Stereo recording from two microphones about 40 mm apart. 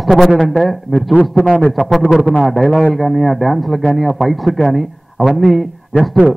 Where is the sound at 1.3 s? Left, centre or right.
Right.